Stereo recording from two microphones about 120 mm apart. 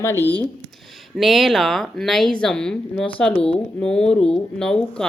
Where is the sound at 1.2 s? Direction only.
Centre (ahead or behind).